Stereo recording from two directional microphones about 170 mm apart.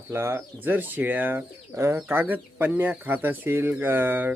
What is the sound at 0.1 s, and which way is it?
Speech, 15° right (ahead or behind).